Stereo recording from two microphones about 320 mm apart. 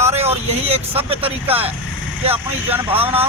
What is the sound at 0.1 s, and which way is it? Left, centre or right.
Speech, centre.